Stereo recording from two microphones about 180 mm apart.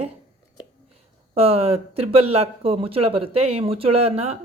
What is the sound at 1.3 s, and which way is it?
Speech, 35° right (ahead or behind).